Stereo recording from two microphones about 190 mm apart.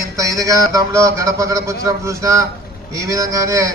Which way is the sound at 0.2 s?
20° right (ahead or behind).